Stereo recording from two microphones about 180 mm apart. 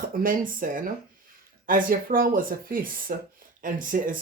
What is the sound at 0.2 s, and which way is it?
Speech, 50° right (ahead or behind).